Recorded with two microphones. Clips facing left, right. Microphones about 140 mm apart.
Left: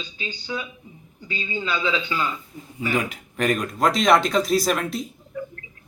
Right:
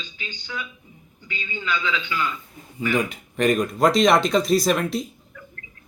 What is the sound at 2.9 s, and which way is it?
Speech, 5° left (ahead or behind).